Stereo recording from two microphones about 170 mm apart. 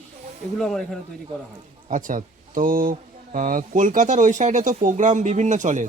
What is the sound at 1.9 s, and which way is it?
Speech, 50° right (ahead or behind).